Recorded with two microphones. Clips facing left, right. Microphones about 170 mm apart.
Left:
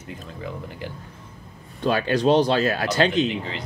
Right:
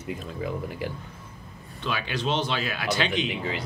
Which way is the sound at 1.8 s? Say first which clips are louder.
Left 9 dB; 45° left (ahead or behind).